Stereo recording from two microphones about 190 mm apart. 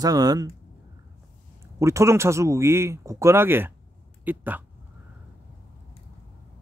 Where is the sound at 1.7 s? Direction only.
15° right (ahead or behind).